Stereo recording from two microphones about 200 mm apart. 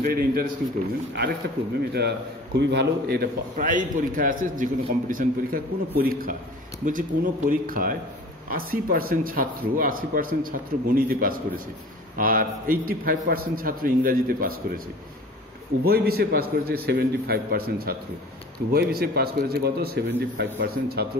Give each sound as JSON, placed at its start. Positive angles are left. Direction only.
{"t": 0.0, "sound": "a man's voice", "side_deg": -45}
{"t": 1.9, "sound": "a man's voice", "side_deg": -55}
{"t": 15.8, "sound": "a man's voice", "side_deg": -50}